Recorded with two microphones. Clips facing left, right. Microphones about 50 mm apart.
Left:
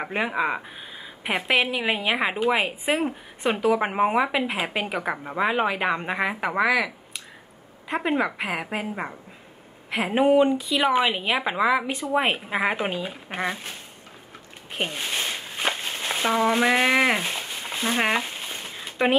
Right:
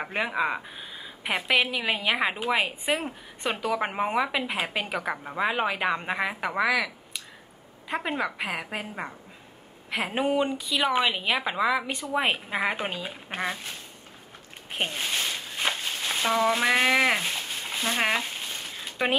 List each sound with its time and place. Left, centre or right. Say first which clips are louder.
0.0 s a woman's voice: left 2 dB; centre
7.9 s a woman's voice: left 5 dB; centre
15.0 s speech: left 1 dB; left
15.3 s a sound: left 2 dB; centre